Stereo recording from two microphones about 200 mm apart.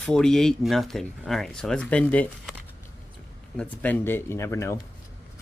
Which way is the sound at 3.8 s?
10° left (ahead or behind).